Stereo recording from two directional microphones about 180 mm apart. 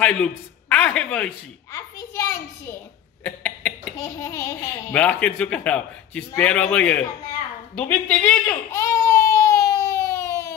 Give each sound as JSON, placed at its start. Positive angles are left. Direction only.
{"t": 0.0, "sound": "a man's voice", "side_deg": 5}
{"t": 8.7, "sound": "baby cry", "side_deg": 15}